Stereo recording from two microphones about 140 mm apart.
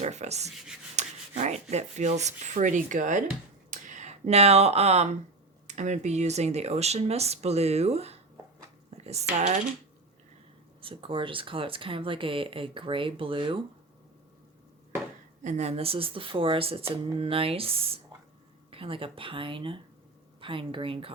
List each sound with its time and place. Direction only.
0.0 s speech: 55° right (ahead or behind)
0.9 s rub: 55° right (ahead or behind)
1.7 s speech: 55° right (ahead or behind)
3.7 s a sound: 60° right (ahead or behind)
5.6 s speech: 55° right (ahead or behind)
9.0 s a sound: 50° right (ahead or behind)
10.8 s speech: 40° right (ahead or behind)
15.4 s speech: 55° right (ahead or behind)